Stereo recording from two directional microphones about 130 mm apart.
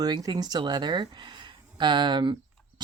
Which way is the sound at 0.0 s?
30° right (ahead or behind).